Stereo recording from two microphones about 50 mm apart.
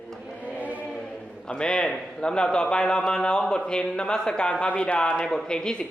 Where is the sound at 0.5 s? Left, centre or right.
Right.